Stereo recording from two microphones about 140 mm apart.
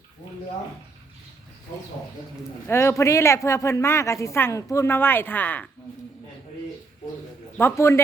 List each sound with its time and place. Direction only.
2.6 s a woman's voice: 20° left (ahead or behind)
7.6 s a woman's voice: 20° left (ahead or behind)